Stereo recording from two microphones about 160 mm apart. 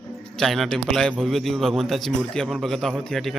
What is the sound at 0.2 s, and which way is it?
A man's voice, 5° left (ahead or behind).